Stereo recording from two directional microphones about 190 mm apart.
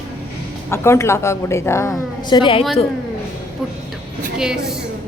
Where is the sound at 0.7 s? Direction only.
15° left (ahead or behind).